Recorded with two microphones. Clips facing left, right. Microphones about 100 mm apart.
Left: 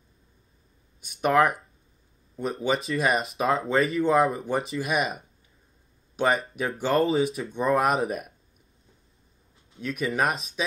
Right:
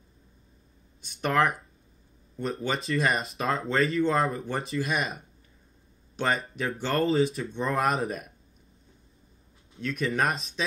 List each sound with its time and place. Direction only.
1.0 s speech: 10° left (ahead or behind)
9.8 s speech: 10° left (ahead or behind)